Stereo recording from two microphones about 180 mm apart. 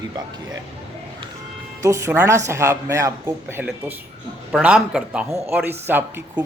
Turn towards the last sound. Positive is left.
turn(degrees=-10)  # may be behind; listen again after turning